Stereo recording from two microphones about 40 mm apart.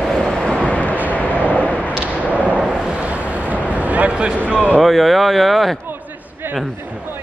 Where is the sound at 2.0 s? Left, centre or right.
Right.